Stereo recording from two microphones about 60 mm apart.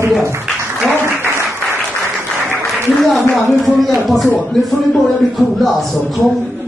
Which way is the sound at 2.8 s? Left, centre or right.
Centre.